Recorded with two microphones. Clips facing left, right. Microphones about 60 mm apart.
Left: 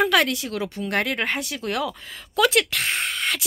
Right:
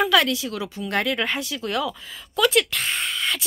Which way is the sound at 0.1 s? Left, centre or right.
Left.